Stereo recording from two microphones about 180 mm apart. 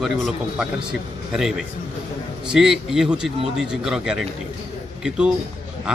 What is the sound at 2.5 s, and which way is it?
A man's voice, 5° right (ahead or behind).